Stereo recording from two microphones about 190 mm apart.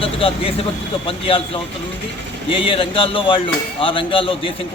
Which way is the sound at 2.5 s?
30° left (ahead or behind).